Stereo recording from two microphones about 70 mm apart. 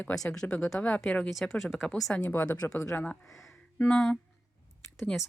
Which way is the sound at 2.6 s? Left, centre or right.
Left.